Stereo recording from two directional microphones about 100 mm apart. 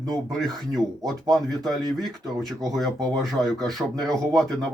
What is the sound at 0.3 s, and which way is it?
A man's voice, 5° left (ahead or behind).